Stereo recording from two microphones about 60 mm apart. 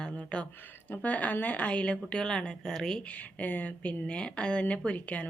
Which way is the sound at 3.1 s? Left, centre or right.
Left.